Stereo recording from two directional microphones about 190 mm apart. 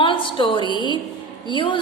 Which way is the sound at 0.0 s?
25° left (ahead or behind).